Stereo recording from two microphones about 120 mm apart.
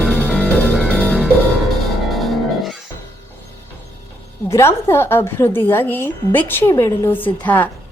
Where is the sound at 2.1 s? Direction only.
Centre (ahead or behind).